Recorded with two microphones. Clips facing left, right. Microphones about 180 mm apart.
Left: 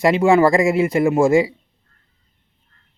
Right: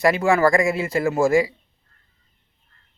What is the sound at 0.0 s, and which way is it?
Speech, 20° left (ahead or behind).